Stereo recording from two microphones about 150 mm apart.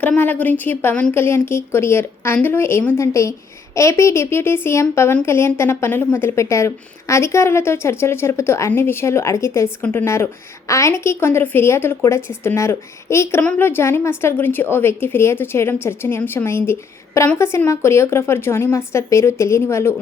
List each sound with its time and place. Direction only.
0.0 s speech: 10° left (ahead or behind)